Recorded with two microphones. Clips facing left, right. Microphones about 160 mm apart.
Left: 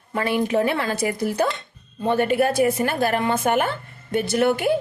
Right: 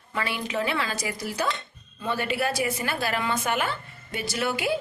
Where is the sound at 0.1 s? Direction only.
45° left (ahead or behind).